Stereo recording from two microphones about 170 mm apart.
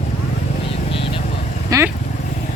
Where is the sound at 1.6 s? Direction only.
20° right (ahead or behind).